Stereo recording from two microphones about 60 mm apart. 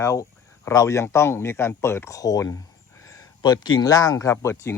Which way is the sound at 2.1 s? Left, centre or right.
Left.